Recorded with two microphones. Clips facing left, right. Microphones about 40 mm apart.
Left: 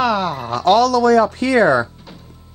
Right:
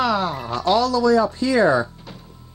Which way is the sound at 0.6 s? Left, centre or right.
Left.